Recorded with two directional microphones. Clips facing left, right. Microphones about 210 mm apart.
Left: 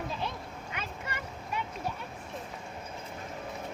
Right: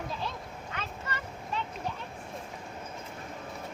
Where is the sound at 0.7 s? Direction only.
10° left (ahead or behind).